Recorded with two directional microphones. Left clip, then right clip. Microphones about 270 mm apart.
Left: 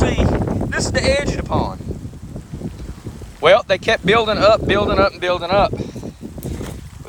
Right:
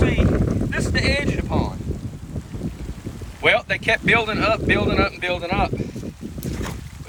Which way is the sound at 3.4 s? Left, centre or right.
Centre.